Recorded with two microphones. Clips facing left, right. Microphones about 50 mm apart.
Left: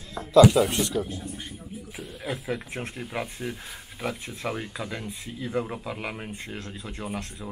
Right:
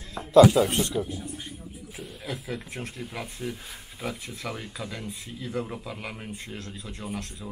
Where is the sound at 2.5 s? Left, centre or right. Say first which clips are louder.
Left 3 dB; left.